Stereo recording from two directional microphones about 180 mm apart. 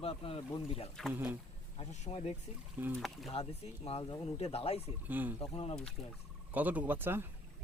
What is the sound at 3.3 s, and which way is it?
Speech, 35° left (ahead or behind).